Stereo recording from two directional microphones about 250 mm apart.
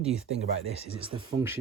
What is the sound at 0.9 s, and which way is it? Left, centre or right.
Speech, right.